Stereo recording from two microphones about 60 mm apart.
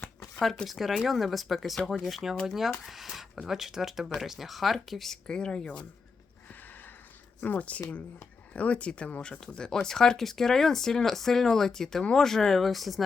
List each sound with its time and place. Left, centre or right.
0.3 s speech: centre
2.8 s a sound: centre
3.3 s speech: centre
7.4 s speech: left; by 13.0 s centre